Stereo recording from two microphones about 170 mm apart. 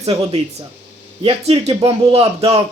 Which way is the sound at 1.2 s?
35° right (ahead or behind).